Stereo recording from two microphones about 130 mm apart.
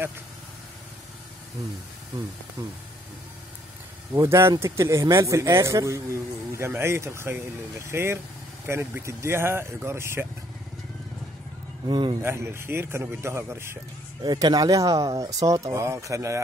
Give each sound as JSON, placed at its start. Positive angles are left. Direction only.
{"t": 4.2, "sound": "speech", "side_deg": -20}
{"t": 11.9, "sound": "a man's voice", "side_deg": -40}
{"t": 12.2, "sound": "speech", "side_deg": -20}
{"t": 14.2, "sound": "speech", "side_deg": -30}